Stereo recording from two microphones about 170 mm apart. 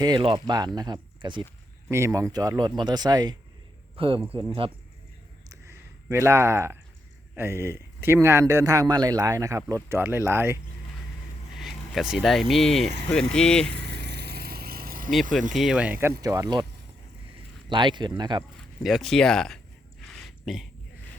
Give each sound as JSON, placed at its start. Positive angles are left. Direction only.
{"t": 0.0, "sound": "speech", "side_deg": -30}
{"t": 1.9, "sound": "speech", "side_deg": -15}
{"t": 5.5, "sound": "a sound", "side_deg": -15}
{"t": 7.3, "sound": "a man's voice", "side_deg": -15}
{"t": 11.5, "sound": "speech", "side_deg": 0}
{"t": 13.7, "sound": "vehicle", "side_deg": -80}
{"t": 15.3, "sound": "speech", "side_deg": -50}
{"t": 15.5, "sound": "a man's voice", "side_deg": -5}
{"t": 17.7, "sound": "speech", "side_deg": -25}
{"t": 18.8, "sound": "speech", "side_deg": 0}
{"t": 20.1, "sound": "a sound", "side_deg": 0}